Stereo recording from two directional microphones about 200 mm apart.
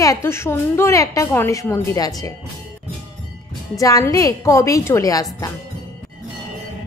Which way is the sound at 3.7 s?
15° left (ahead or behind).